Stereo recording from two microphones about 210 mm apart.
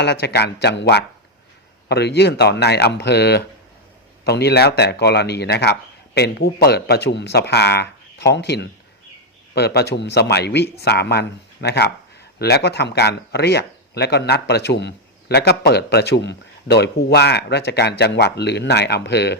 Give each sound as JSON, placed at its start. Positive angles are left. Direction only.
{"t": 0.0, "sound": "speech", "side_deg": 55}